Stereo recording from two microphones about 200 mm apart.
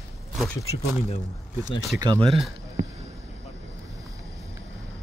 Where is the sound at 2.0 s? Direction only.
25° right (ahead or behind).